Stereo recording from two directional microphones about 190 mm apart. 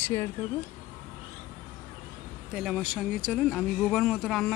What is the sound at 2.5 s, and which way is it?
Speech, centre (ahead or behind).